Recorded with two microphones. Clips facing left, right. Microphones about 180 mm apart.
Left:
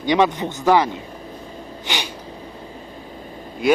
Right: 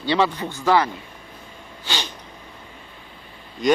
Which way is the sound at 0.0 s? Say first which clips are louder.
Left 3 dB; 15° left (ahead or behind).